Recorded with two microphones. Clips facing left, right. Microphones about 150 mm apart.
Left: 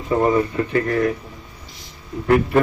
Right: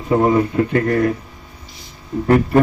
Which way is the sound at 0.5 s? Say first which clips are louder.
Right 3 dB; 50° right (ahead or behind).